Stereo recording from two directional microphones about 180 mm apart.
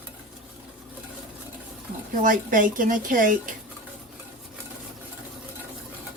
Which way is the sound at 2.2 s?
50° right (ahead or behind).